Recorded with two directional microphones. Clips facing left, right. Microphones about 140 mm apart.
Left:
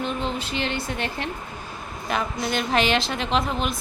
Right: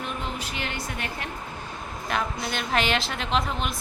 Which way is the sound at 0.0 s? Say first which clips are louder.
Left 5 dB; 25° left (ahead or behind).